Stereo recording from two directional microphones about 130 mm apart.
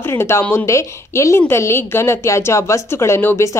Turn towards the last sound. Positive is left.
turn(degrees=20)  # may be behind; listen again after turning